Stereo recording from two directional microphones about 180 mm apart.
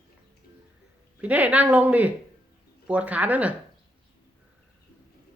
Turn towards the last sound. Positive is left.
turn(degrees=-10)  # may be behind; listen again after turning